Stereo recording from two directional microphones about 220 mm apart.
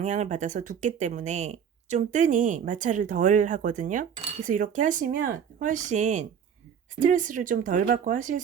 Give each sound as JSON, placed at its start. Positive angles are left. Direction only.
{"t": 0.0, "sound": "speech", "side_deg": -30}